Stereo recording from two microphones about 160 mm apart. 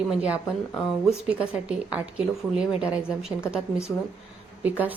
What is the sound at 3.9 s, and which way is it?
Speech, 10° left (ahead or behind).